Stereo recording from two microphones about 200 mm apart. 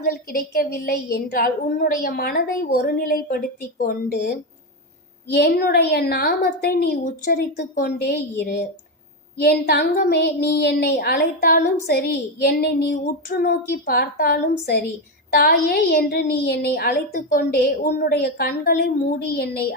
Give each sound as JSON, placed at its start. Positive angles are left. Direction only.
{"t": 0.0, "sound": "a woman's voice", "side_deg": 50}
{"t": 5.3, "sound": "a woman's voice", "side_deg": 55}